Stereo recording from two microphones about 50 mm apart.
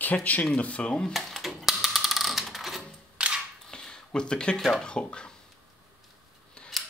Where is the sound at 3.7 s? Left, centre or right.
Centre.